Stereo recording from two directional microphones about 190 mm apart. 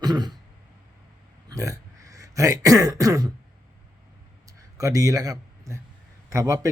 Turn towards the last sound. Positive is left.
turn(degrees=-15)  # may be behind; listen again after turning